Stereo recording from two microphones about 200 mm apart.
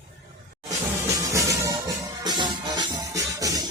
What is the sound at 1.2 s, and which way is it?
Music, 15° right (ahead or behind).